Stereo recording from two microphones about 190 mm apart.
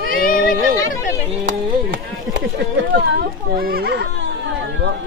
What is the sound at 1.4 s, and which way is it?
Speech, 65° right (ahead or behind).